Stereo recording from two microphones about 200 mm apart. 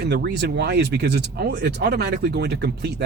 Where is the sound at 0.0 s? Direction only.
60° right (ahead or behind).